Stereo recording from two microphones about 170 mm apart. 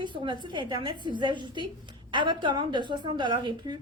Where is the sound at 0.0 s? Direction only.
30° right (ahead or behind).